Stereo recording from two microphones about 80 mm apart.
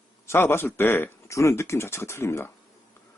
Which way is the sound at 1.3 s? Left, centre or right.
Left.